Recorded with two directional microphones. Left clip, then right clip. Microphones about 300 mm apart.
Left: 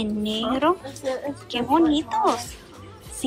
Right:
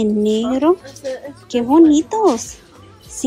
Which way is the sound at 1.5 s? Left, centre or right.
Centre.